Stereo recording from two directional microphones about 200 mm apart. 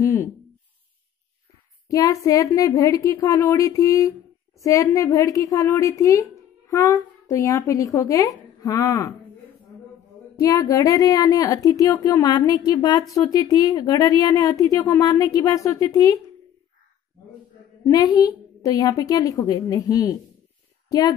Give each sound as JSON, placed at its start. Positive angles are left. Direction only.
{"t": 0.0, "sound": "a sound", "side_deg": 15}
{"t": 1.9, "sound": "speech", "side_deg": 15}
{"t": 10.3, "sound": "speech", "side_deg": 20}
{"t": 17.8, "sound": "speech", "side_deg": 20}